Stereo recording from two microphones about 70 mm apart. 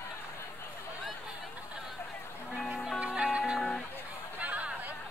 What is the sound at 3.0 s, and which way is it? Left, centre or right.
Music, centre.